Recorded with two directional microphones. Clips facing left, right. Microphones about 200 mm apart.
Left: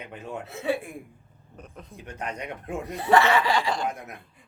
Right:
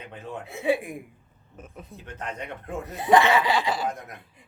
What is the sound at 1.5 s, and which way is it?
Speech, 5° right (ahead or behind).